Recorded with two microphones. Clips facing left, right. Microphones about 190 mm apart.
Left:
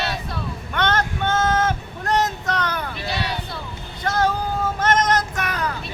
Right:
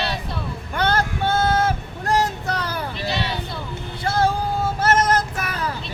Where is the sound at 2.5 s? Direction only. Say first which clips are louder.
Left 1 dB; 30° right (ahead or behind).